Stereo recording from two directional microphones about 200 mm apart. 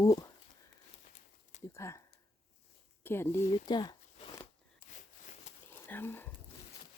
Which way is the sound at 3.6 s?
20° left (ahead or behind).